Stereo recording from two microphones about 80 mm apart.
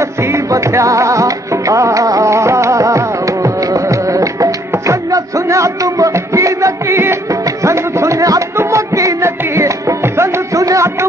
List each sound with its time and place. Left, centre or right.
0.0 s music: right